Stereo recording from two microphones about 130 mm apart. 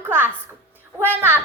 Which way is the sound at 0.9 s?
15° right (ahead or behind).